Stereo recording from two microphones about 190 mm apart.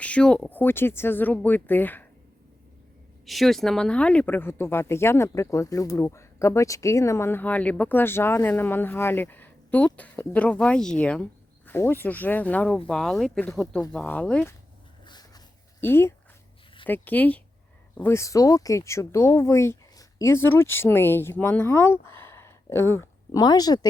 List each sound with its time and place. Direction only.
0.0 s speech: 5° left (ahead or behind)
3.2 s speech: centre (ahead or behind)
15.0 s a sound: 20° left (ahead or behind)
15.8 s speech: 10° left (ahead or behind)